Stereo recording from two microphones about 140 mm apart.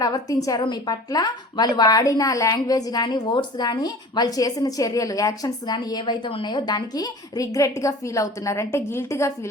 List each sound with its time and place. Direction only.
0.0 s a woman's voice: 25° left (ahead or behind)